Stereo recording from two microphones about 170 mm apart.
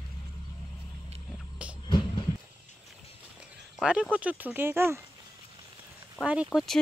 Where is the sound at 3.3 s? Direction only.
5° right (ahead or behind).